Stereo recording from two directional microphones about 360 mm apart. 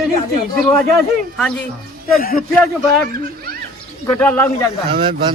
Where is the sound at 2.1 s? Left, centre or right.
Left.